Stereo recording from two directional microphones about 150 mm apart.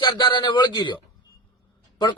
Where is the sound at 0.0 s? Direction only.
30° left (ahead or behind).